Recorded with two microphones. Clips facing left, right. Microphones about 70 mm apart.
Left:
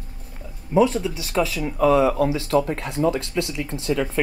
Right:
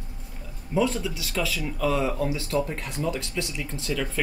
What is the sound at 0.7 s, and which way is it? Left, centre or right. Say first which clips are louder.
Speech: left 6 dB; left.